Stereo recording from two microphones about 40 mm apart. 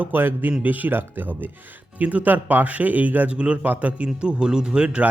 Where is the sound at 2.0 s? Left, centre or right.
Right.